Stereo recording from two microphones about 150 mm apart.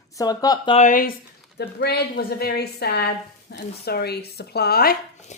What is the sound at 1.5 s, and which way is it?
Speech, 90° left.